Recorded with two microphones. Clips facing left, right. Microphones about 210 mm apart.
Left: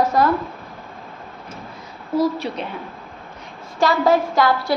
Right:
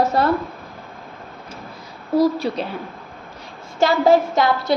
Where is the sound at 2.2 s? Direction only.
35° right (ahead or behind).